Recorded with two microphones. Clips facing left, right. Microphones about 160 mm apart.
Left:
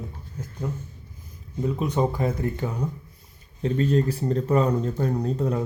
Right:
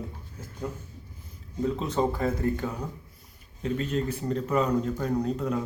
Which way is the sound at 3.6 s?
35° left (ahead or behind).